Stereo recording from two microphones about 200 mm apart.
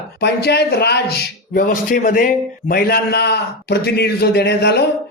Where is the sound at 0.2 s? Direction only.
55° left (ahead or behind).